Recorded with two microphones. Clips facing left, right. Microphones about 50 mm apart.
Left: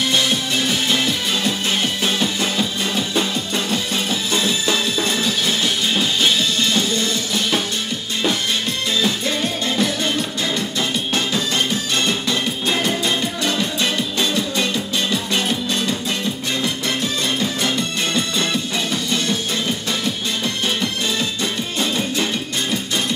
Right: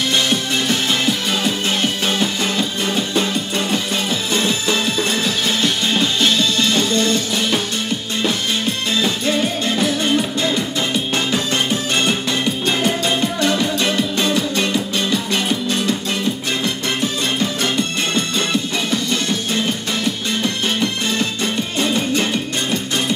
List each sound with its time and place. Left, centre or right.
0.1 s music: centre
9.0 s music: centre
11.1 s music: centre
13.0 s music: centre
15.0 s music: centre
17.6 s music: centre